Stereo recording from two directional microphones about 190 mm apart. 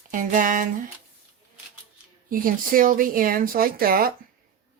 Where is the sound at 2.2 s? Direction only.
45° right (ahead or behind).